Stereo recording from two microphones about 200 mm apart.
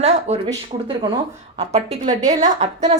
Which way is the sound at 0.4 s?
25° right (ahead or behind).